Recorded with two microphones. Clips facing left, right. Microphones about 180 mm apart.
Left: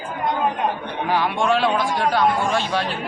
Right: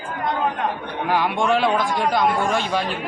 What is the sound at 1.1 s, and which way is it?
A man's voice, 10° right (ahead or behind).